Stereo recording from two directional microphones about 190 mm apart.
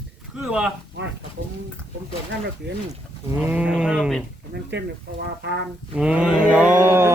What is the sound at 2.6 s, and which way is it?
Speech, 65° right (ahead or behind).